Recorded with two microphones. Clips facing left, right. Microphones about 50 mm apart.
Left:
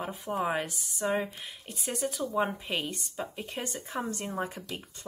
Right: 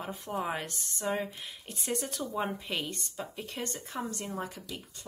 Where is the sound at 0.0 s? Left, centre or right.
Centre.